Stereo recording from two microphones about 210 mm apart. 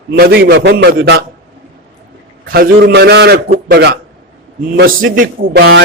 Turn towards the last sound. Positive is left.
turn(degrees=-50)  # may be behind; listen again after turning